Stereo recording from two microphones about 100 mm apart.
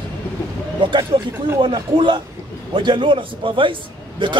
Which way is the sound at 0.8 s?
55° right (ahead or behind).